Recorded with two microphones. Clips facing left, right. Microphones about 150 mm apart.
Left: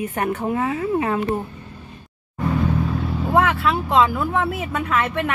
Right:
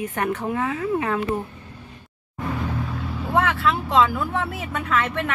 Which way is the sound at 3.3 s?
10° left (ahead or behind).